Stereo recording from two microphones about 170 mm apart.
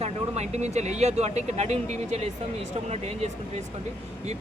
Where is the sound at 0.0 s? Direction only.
40° right (ahead or behind).